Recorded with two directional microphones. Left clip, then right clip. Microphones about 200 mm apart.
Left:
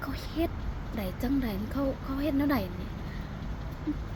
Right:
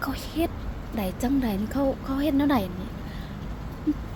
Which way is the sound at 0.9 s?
20° right (ahead or behind).